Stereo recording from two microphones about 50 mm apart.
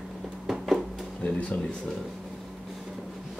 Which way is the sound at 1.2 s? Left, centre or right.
Left.